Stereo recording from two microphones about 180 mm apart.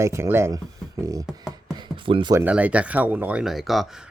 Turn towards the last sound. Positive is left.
turn(degrees=0)  # may be behind; listen again after turning